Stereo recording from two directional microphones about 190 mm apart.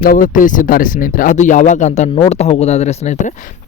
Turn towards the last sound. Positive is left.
turn(degrees=35)  # may be behind; listen again after turning